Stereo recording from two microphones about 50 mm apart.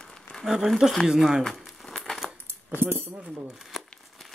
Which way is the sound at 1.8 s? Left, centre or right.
Centre.